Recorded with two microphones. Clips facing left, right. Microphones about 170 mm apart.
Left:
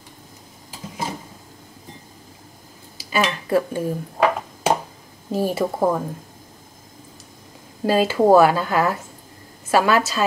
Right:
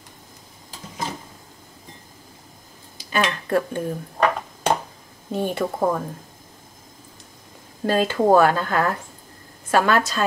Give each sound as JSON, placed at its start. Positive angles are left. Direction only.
{"t": 0.7, "sound": "a sound", "side_deg": 10}
{"t": 3.0, "sound": "speech", "side_deg": 5}
{"t": 7.8, "sound": "speech", "side_deg": 5}